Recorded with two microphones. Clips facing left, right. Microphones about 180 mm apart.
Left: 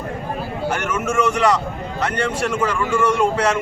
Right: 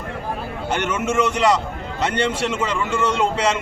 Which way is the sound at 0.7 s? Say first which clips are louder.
Right 2 dB; 20° right (ahead or behind).